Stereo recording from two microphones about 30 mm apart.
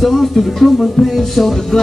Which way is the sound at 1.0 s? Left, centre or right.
Left.